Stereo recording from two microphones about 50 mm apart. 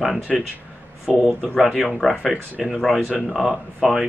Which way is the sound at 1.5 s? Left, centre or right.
Centre.